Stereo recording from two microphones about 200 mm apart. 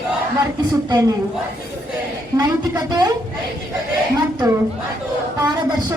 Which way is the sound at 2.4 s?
20° right (ahead or behind).